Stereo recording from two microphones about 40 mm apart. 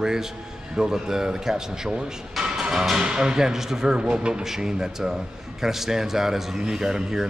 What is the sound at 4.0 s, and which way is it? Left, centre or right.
Speech, right.